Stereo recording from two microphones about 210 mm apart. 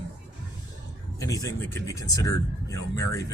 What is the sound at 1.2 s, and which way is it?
Speech, 15° left (ahead or behind).